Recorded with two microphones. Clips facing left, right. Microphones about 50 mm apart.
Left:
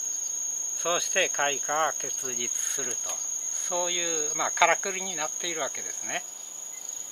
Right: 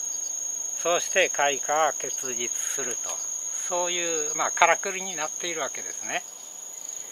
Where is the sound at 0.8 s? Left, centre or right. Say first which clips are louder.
Right 4 dB; centre.